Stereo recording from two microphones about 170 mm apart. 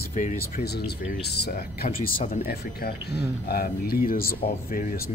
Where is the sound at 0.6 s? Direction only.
70° left (ahead or behind).